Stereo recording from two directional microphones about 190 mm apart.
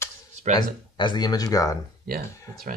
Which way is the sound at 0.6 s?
25° left (ahead or behind).